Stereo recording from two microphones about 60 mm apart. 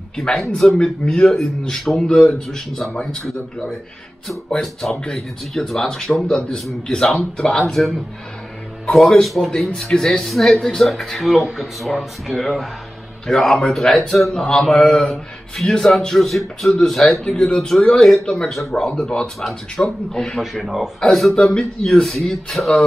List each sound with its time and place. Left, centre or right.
0.1 s speech: centre
4.5 s speech: centre
8.8 s speech: centre